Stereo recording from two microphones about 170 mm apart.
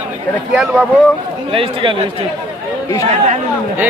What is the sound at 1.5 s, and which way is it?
Speech, 30° right (ahead or behind).